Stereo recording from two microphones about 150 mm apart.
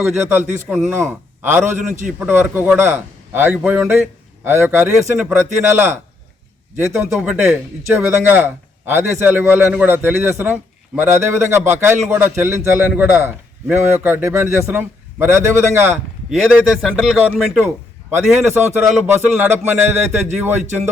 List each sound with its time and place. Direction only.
0.2 s a man's voice: 15° right (ahead or behind)
16.3 s a man's voice: centre (ahead or behind)
18.7 s a man's voice: 15° right (ahead or behind)